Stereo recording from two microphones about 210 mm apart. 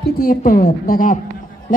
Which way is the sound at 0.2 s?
40° left (ahead or behind).